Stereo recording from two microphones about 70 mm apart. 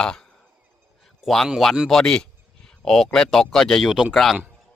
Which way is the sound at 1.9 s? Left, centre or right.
Centre.